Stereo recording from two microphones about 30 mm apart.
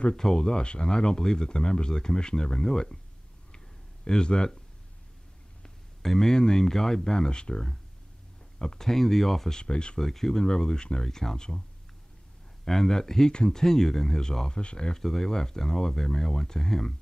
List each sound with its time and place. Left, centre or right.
0.1 s speech: centre
4.1 s speech: left
6.0 s speech: centre
7.1 s speech: left
8.7 s speech: centre
9.6 s speech: left
9.9 s speech: centre
12.6 s speech: centre
14.5 s speech: left
14.9 s speech: centre